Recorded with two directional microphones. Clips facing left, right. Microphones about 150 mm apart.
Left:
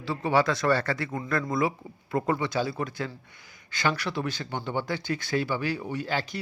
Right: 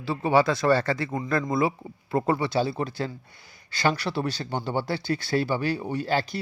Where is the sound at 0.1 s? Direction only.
25° right (ahead or behind).